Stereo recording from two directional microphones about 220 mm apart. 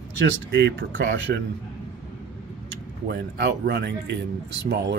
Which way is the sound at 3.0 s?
45° right (ahead or behind).